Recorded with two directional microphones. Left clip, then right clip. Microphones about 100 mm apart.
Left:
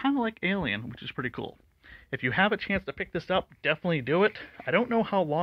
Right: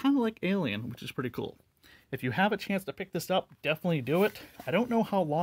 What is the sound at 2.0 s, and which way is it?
Speech, 30° right (ahead or behind).